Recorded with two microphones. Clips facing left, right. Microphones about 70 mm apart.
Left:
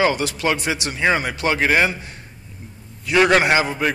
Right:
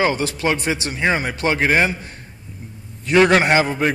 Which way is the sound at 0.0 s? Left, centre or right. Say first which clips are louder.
Even; right.